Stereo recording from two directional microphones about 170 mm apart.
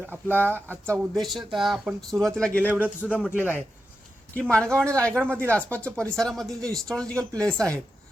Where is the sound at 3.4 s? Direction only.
10° left (ahead or behind).